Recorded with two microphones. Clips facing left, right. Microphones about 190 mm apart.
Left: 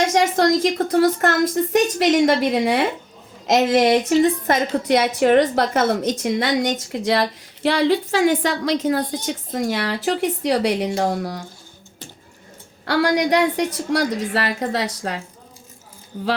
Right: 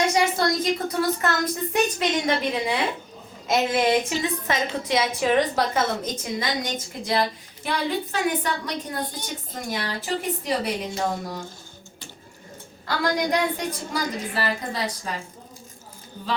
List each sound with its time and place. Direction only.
0.0 s a woman's voice: 90° left
1.7 s a woman's voice: 90° left; by 2.8 s 65° left (ahead or behind)
3.4 s a woman's voice: 80° left
3.9 s a woman's voice: 45° left (ahead or behind)
4.8 s a woman's voice: 65° left (ahead or behind)
12.8 s a woman's voice: 75° left (ahead or behind)